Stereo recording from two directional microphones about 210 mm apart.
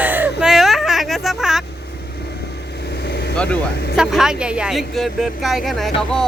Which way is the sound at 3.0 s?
50° left (ahead or behind).